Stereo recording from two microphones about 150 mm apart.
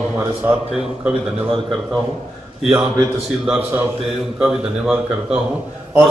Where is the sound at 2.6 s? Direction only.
5° right (ahead or behind).